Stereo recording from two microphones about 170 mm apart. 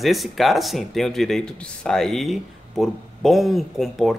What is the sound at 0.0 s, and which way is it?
A man's voice, centre (ahead or behind).